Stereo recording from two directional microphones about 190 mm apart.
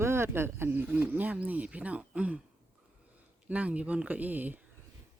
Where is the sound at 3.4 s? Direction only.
5° right (ahead or behind).